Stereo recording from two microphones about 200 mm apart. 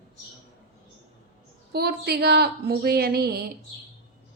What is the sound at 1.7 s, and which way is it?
Speech, 55° right (ahead or behind).